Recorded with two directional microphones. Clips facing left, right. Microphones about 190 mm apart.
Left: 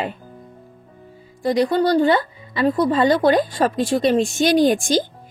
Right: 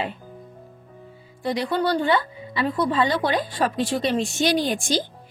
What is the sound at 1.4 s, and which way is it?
A woman's voice, 45° left (ahead or behind).